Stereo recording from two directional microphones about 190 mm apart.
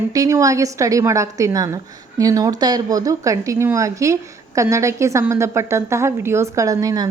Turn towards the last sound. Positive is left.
turn(degrees=-20)  # may be behind; listen again after turning